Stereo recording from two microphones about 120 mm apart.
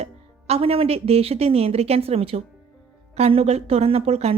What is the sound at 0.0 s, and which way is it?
A woman's voice, 60° right (ahead or behind).